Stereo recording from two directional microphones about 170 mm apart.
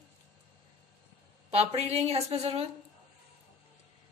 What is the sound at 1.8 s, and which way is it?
Speech, 40° right (ahead or behind).